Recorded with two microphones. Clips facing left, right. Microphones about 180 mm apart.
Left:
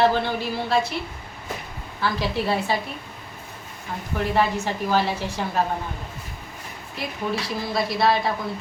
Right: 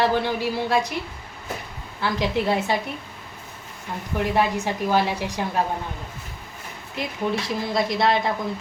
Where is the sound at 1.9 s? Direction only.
15° right (ahead or behind).